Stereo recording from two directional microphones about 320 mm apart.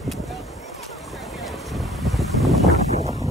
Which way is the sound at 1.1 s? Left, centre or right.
Centre.